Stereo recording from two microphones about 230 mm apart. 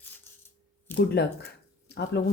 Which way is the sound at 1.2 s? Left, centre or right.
Left.